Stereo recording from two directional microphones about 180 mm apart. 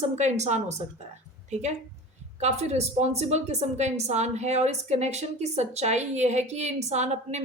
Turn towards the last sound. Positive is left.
turn(degrees=-40)  # may be behind; listen again after turning